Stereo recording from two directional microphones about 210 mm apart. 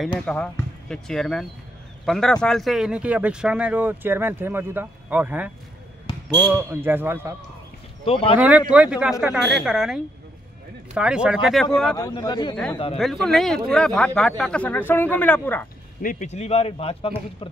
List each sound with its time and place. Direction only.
0.2 s speech: 5° left (ahead or behind)
6.5 s speech: 10° right (ahead or behind)
8.0 s speech: 25° left (ahead or behind)
8.4 s speech: 5° right (ahead or behind)
12.0 s speech: 15° left (ahead or behind)
12.9 s speech: centre (ahead or behind)
16.0 s speech: 35° left (ahead or behind)